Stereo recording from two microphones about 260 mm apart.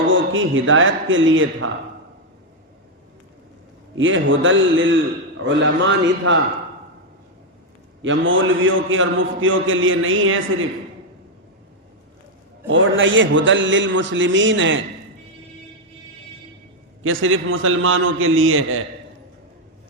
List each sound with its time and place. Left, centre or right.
0.1 s a man's voice: right
3.9 s a man's voice: right
8.0 s a man's voice: right
12.6 s a man's voice: right
17.0 s a man's voice: right